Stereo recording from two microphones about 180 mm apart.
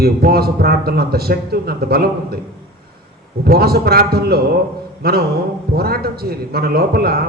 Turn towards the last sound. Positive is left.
turn(degrees=-60)  # may be behind; listen again after turning